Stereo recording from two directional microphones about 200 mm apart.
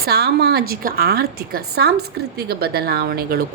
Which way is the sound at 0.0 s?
50° right (ahead or behind).